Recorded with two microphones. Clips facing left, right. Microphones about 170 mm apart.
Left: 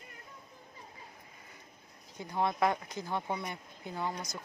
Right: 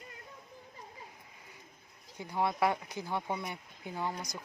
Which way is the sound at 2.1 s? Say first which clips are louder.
Even; 10° right (ahead or behind).